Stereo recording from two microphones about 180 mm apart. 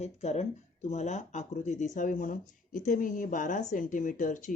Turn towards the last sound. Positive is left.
turn(degrees=45)  # may be behind; listen again after turning